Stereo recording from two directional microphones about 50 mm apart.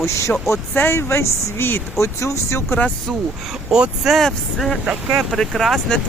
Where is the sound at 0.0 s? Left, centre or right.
Left.